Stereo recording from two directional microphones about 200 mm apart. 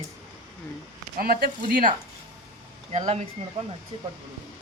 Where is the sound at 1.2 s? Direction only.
45° right (ahead or behind).